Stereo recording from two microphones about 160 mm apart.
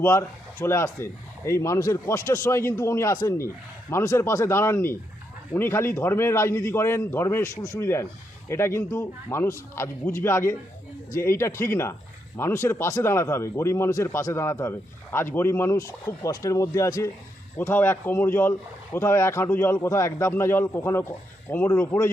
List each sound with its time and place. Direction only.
0.0 s speech: 15° left (ahead or behind)